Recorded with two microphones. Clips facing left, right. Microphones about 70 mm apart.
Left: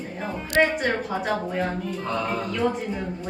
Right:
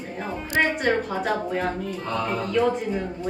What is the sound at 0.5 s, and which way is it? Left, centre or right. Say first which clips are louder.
A woman's voice: even; centre.